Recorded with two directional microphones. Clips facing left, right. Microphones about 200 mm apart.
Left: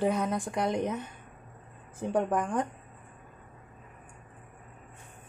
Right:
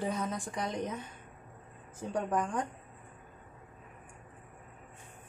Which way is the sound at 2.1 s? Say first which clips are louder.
Left 4 dB; 55° left (ahead or behind).